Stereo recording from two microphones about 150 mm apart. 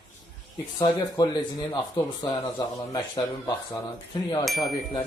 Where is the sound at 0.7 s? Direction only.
25° left (ahead or behind).